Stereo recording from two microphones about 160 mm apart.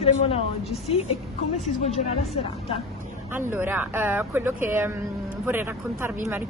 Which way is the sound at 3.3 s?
15° right (ahead or behind).